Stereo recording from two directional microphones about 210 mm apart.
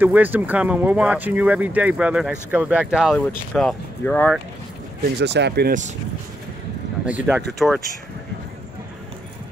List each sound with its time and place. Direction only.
0.0 s speech: 10° right (ahead or behind)
5.2 s speech: 55° right (ahead or behind)
7.1 s speech: 5° right (ahead or behind)